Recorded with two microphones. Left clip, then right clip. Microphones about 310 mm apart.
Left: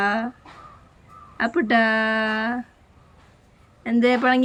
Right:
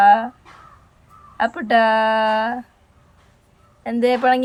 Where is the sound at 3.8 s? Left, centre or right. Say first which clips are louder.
Right 2 dB; centre.